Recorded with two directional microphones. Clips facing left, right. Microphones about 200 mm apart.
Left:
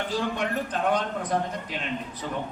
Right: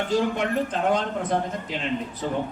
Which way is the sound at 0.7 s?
25° right (ahead or behind).